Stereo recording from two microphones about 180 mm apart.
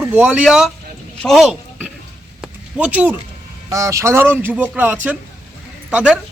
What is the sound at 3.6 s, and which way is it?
Speech, 15° right (ahead or behind).